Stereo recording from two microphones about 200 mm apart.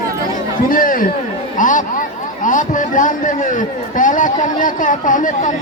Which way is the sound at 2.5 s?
40° left (ahead or behind).